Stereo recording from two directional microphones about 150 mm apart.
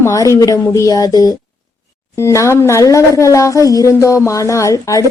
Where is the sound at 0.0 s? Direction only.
20° left (ahead or behind).